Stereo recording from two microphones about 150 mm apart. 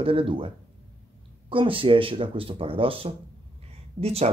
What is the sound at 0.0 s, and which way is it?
Speech, 35° right (ahead or behind).